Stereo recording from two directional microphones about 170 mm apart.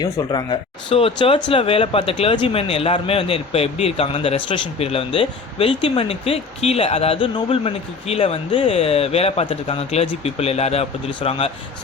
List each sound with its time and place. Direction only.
0.0 s speech: 25° left (ahead or behind)